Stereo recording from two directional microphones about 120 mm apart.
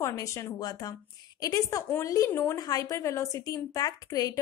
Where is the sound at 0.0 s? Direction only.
25° left (ahead or behind).